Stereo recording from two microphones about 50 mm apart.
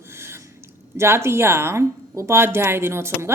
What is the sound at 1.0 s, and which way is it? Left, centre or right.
A woman's voice, right.